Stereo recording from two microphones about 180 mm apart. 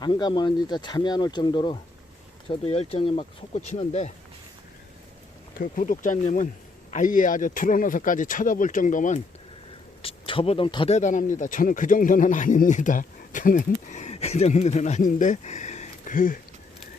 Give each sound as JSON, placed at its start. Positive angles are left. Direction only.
{"t": 0.0, "sound": "speech", "side_deg": 25}
{"t": 5.5, "sound": "speech", "side_deg": 50}
{"t": 10.0, "sound": "speech", "side_deg": 30}
{"t": 10.9, "sound": "speech", "side_deg": 45}